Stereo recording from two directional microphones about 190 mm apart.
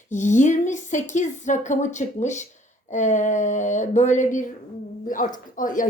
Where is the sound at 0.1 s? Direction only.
40° left (ahead or behind).